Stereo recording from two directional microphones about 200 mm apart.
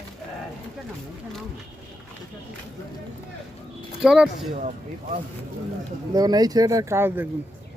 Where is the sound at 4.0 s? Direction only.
5° right (ahead or behind).